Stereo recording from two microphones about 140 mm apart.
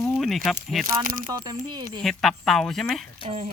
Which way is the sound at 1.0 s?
90° right.